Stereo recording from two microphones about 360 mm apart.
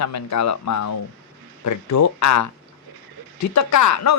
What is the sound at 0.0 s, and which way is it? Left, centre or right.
A woman's voice, left.